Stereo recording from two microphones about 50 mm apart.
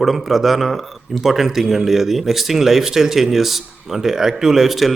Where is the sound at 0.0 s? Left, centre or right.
Centre.